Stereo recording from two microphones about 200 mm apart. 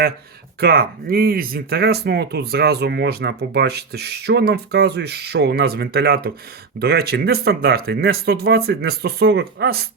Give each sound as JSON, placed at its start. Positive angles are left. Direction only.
{"t": 0.6, "sound": "speech", "side_deg": -50}